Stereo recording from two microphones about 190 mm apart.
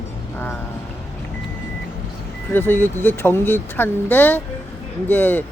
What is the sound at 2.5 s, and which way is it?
Speech, 10° left (ahead or behind).